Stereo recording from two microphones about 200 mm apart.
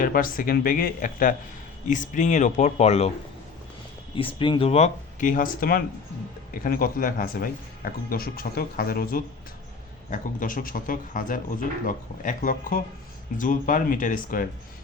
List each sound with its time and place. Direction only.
0.0 s speech: 45° left (ahead or behind)
4.1 s speech: 25° left (ahead or behind); by 14.4 s 45° left (ahead or behind)